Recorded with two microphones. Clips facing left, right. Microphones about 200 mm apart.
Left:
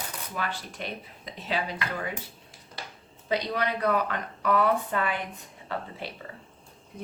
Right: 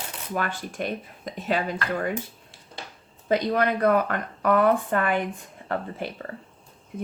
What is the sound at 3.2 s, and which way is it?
A woman's voice, 50° right (ahead or behind).